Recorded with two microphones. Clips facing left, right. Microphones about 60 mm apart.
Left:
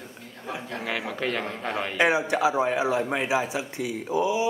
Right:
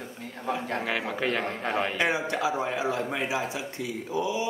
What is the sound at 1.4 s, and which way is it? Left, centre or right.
Speech, right.